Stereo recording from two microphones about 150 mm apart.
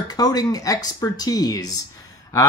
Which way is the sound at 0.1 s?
25° left (ahead or behind).